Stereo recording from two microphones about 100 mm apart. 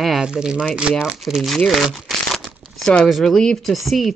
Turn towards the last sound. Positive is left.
turn(degrees=0)  # may be behind; listen again after turning